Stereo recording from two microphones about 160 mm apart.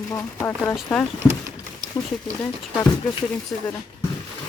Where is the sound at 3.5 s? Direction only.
10° left (ahead or behind).